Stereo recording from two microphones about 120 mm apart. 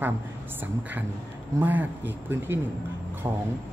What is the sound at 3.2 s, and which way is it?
Speech, 30° right (ahead or behind).